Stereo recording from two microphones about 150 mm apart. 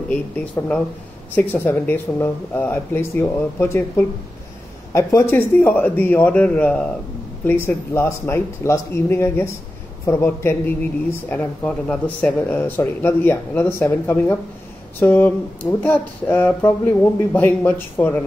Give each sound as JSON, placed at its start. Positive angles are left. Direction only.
{"t": 0.1, "sound": "speech", "side_deg": 10}